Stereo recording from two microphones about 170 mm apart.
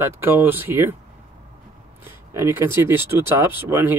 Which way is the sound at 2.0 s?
15° right (ahead or behind).